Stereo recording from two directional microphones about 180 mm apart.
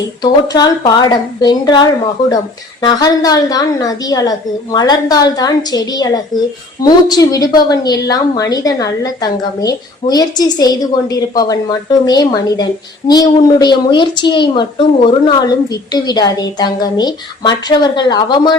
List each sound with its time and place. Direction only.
0.2 s a woman's voice: 20° left (ahead or behind)